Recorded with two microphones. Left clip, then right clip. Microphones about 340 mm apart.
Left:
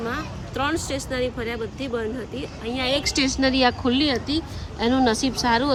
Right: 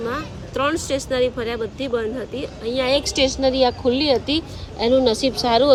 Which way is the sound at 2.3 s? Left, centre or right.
Centre.